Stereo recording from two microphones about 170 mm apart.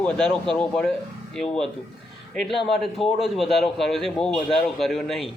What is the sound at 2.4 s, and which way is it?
A man's voice, centre (ahead or behind).